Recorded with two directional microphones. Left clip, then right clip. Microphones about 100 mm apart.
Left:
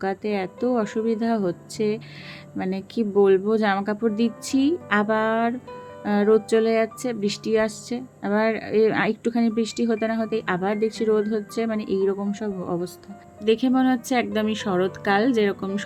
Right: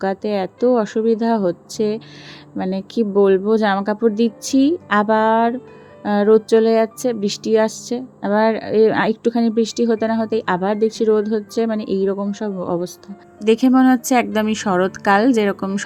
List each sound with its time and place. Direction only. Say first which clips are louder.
0.0 s speech: right 5 dB; 35° right (ahead or behind)
13.4 s a woman's voice: right 6 dB; 90° right